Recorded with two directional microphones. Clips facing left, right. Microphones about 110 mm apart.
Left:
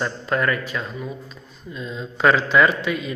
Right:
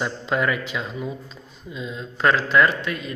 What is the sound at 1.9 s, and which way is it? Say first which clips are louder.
Speech: left 2 dB; centre (ahead or behind).